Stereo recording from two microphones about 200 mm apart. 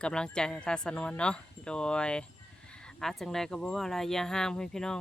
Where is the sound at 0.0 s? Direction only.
5° left (ahead or behind).